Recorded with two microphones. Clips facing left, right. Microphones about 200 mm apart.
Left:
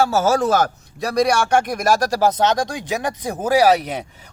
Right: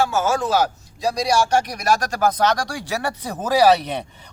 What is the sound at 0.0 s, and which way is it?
A man's voice, 40° left (ahead or behind).